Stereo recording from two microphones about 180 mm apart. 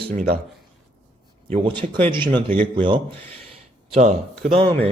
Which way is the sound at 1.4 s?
30° right (ahead or behind).